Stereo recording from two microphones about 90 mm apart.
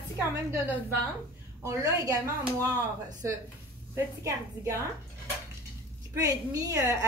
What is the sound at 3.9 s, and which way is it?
Speech, 35° right (ahead or behind).